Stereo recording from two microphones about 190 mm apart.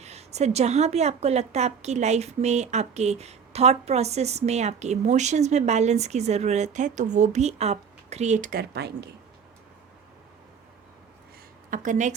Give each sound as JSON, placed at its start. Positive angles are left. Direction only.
{"t": 0.0, "sound": "a woman's voice", "side_deg": -35}
{"t": 11.7, "sound": "a woman's voice", "side_deg": -40}